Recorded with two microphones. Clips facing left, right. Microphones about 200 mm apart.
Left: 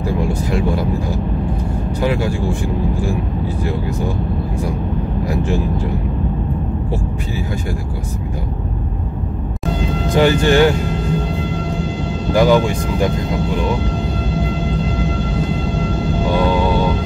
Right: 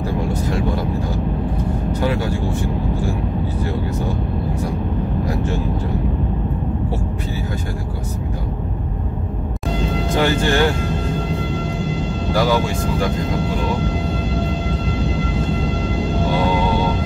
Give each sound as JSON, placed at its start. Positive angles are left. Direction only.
{"t": 10.1, "sound": "speech", "side_deg": 15}
{"t": 12.3, "sound": "speech", "side_deg": 20}